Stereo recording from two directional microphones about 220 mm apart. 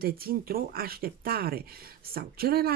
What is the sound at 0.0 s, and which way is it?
Speech, 40° right (ahead or behind).